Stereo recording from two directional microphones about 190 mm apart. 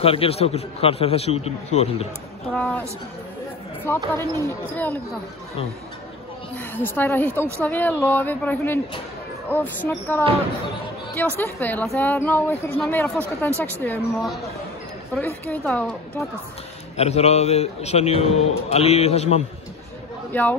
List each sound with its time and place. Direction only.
0.0 s a man's voice: 30° left (ahead or behind)
2.5 s a woman's voice: 5° left (ahead or behind)
3.8 s speech: 10° left (ahead or behind)
6.5 s speech: 10° left (ahead or behind)
11.3 s a woman's voice: 10° left (ahead or behind)
16.9 s a man's voice: 35° left (ahead or behind)
20.3 s speech: 10° left (ahead or behind)